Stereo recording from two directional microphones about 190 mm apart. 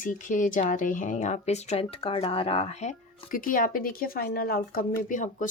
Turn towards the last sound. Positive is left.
turn(degrees=45)  # may be behind; listen again after turning